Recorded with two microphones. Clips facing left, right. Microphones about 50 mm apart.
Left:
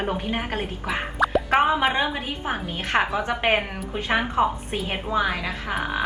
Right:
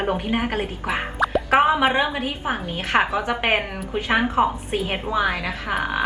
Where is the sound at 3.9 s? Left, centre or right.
Centre.